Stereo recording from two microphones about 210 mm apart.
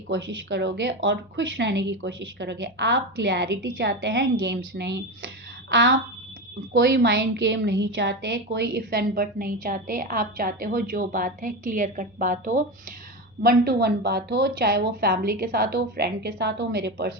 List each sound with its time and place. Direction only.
0.1 s a woman's voice: 55° right (ahead or behind)